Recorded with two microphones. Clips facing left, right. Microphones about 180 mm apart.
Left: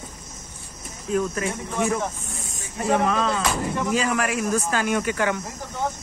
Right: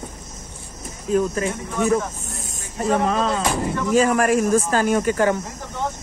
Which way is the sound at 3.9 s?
45° right (ahead or behind).